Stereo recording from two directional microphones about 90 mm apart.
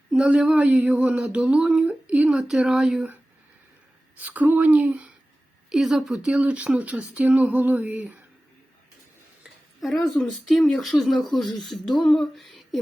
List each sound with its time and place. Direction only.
0.1 s speech: 10° right (ahead or behind)
4.2 s speech: 20° right (ahead or behind)
9.8 s speech: centre (ahead or behind)